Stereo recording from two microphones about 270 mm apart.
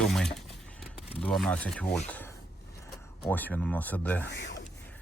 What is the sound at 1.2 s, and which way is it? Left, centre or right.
Speech, centre.